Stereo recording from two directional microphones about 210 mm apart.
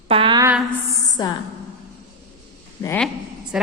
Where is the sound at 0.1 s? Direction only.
25° right (ahead or behind).